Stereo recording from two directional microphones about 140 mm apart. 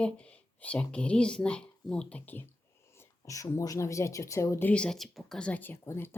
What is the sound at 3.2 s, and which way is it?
Speech, 25° left (ahead or behind).